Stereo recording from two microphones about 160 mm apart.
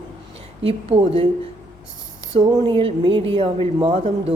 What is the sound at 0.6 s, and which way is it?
Speech, 40° right (ahead or behind).